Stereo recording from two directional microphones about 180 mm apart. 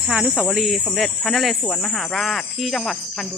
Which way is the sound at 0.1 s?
5° right (ahead or behind).